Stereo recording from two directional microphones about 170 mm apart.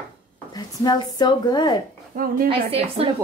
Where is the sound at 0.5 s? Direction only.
25° left (ahead or behind).